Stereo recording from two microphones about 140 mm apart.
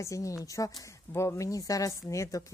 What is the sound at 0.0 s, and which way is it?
Speech, 25° left (ahead or behind).